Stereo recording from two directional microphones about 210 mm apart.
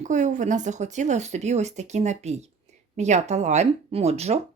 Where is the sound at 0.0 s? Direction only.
35° right (ahead or behind).